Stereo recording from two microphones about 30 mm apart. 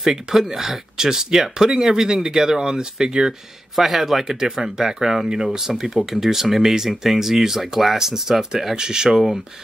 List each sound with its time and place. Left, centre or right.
0.4 s speech: centre
3.7 s speech: centre